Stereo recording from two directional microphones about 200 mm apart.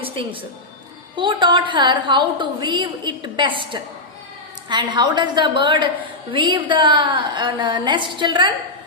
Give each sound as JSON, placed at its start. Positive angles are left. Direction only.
{"t": 0.0, "sound": "music", "side_deg": -25}
{"t": 1.1, "sound": "a woman's voice", "side_deg": -25}